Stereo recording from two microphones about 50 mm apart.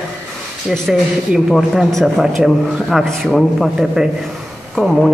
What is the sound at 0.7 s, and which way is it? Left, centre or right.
Speech, centre.